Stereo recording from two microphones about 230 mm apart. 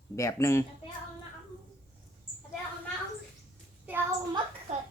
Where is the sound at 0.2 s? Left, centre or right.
Centre.